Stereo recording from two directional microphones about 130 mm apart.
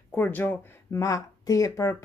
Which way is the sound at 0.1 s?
15° left (ahead or behind).